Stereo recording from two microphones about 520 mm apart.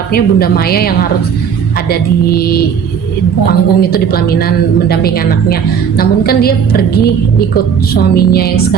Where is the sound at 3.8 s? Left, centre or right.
Centre.